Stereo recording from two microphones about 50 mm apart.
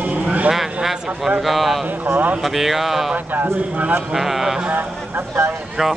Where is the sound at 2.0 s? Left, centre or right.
Right.